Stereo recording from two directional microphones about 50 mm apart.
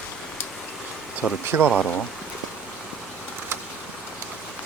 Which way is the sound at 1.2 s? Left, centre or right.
Centre.